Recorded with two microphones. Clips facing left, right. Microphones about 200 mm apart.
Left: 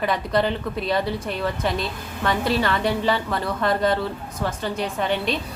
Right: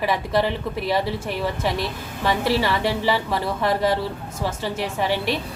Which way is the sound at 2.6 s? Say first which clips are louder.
Even; 10° right (ahead or behind).